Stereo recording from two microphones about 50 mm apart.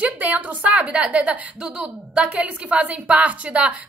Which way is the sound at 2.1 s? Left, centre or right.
Right.